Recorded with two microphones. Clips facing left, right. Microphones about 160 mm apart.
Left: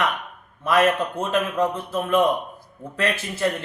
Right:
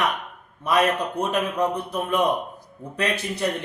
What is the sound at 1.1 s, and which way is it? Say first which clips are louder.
Speech: left 1 dB; 15° right (ahead or behind).